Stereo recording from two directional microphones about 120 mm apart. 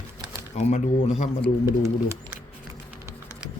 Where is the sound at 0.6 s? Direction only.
75° left (ahead or behind).